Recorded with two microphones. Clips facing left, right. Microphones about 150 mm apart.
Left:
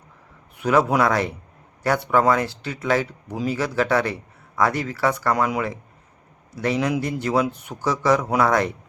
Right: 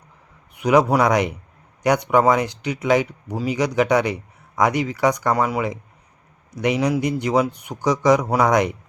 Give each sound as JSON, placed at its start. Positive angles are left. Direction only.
{"t": 0.6, "sound": "speech", "side_deg": -15}
{"t": 5.3, "sound": "speech", "side_deg": -5}
{"t": 6.5, "sound": "a man's voice", "side_deg": -15}